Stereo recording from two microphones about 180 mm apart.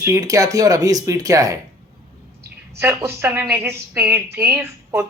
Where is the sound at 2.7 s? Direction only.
15° right (ahead or behind).